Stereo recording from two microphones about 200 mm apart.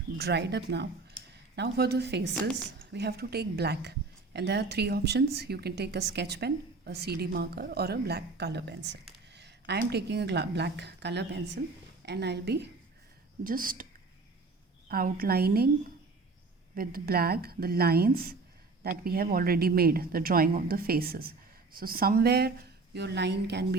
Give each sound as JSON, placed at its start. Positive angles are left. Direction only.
{"t": 0.2, "sound": "a woman's voice", "side_deg": -55}
{"t": 13.4, "sound": "a woman's voice", "side_deg": -45}
{"t": 14.8, "sound": "a woman's voice", "side_deg": -45}
{"t": 16.7, "sound": "a woman's voice", "side_deg": -45}